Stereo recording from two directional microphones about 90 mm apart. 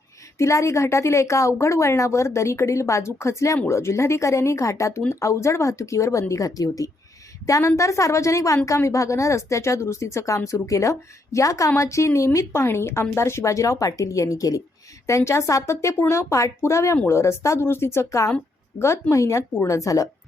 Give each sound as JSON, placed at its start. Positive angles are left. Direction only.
{"t": 0.3, "sound": "a woman's voice", "side_deg": 35}